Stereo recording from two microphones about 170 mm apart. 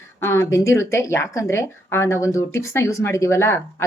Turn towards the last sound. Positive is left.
turn(degrees=15)  # may be behind; listen again after turning